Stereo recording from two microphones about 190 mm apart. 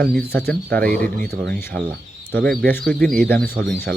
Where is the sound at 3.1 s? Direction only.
50° right (ahead or behind).